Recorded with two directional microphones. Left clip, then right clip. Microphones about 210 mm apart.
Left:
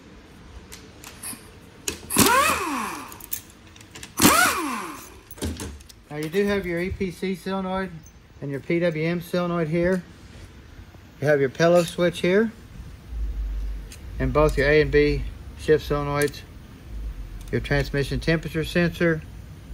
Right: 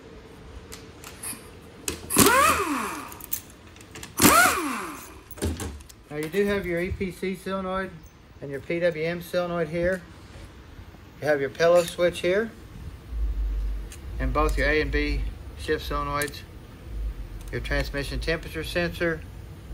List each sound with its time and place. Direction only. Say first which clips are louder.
2.1 s a sound: even; centre (ahead or behind)
4.2 s vehicle: even; 15° left (ahead or behind)
6.4 s speech: even; 15° left (ahead or behind)
11.1 s speech: left 3 dB; 25° left (ahead or behind)
14.1 s speech: left 5 dB; 25° left (ahead or behind)
17.5 s speech: left 4 dB; 20° left (ahead or behind)